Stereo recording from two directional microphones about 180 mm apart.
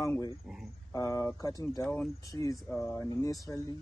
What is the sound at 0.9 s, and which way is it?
Speech, 20° left (ahead or behind).